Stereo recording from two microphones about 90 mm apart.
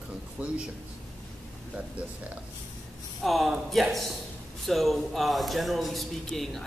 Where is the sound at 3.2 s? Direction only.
Centre (ahead or behind).